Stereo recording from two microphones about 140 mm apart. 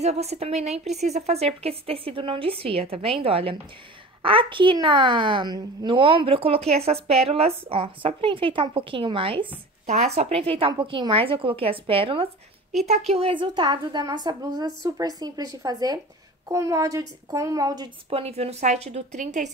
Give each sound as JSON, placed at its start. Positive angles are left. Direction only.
{"t": 0.0, "sound": "a woman's voice", "side_deg": -50}
{"t": 9.8, "sound": "a woman's voice", "side_deg": -50}
{"t": 18.1, "sound": "speech", "side_deg": -50}